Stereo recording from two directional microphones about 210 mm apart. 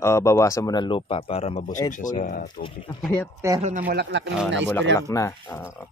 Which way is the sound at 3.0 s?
5° left (ahead or behind).